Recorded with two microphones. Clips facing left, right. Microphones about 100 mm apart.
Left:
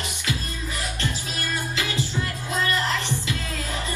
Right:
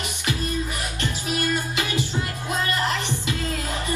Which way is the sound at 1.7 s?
20° right (ahead or behind).